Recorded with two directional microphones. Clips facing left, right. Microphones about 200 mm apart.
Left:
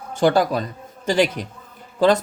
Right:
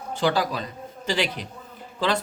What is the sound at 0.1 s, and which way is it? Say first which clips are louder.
Speech: left 6 dB; 50° left (ahead or behind).